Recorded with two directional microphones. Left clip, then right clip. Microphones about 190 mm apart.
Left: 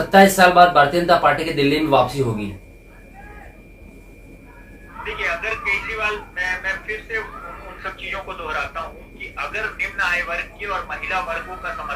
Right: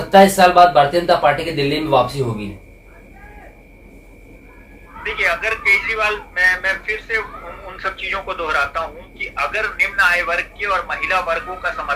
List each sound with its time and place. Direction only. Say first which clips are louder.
0.1 s speech: right 2 dB; centre (ahead or behind)
5.0 s a sound: right 5 dB; 40° right (ahead or behind)
7.8 s a man's voice: right 6 dB; 40° right (ahead or behind)